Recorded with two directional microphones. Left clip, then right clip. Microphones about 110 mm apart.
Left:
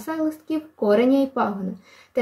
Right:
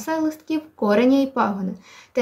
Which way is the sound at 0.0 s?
25° right (ahead or behind).